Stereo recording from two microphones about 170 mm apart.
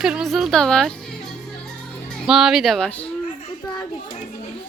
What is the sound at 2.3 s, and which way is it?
Speech, 5° right (ahead or behind).